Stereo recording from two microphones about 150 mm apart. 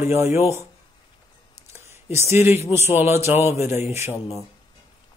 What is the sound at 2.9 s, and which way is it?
Speech, 15° right (ahead or behind).